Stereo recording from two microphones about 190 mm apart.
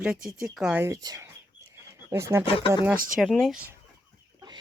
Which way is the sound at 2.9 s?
50° right (ahead or behind).